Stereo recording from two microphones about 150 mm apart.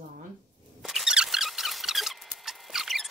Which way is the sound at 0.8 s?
5° right (ahead or behind).